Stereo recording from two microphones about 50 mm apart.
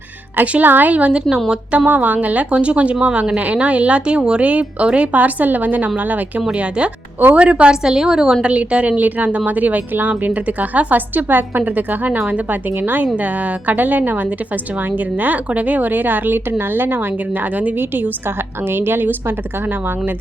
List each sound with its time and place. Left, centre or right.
0.6 s a woman's voice: right
6.5 s a woman's voice: right